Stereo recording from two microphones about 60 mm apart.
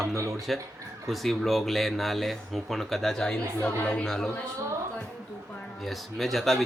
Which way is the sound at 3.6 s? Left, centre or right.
Centre.